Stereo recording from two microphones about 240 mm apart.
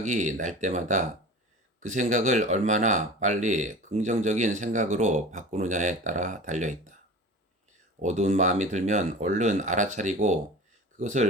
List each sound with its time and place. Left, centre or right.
0.0 s speech: right
8.0 s speech: right